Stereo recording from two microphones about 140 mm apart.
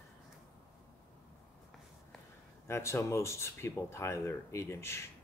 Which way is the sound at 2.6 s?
20° left (ahead or behind).